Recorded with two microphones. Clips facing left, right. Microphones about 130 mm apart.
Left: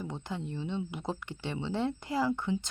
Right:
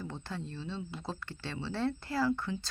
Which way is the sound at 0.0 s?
15° left (ahead or behind).